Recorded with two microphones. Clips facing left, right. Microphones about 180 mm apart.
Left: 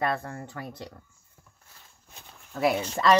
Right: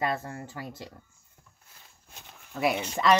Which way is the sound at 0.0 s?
25° right (ahead or behind).